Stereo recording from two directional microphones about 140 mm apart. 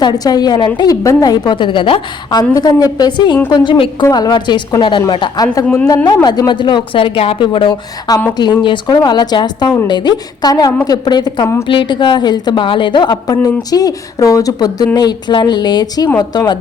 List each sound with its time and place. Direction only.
0.0 s a woman's voice: 30° left (ahead or behind)